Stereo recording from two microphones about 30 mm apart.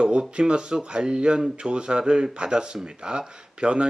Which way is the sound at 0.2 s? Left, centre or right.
Right.